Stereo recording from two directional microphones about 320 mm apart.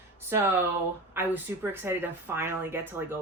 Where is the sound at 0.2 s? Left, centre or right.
Centre.